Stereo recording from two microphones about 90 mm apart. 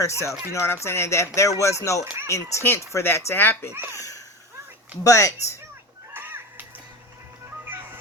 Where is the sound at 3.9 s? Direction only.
40° left (ahead or behind).